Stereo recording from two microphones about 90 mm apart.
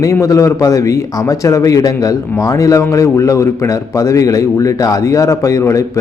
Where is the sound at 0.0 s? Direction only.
35° left (ahead or behind).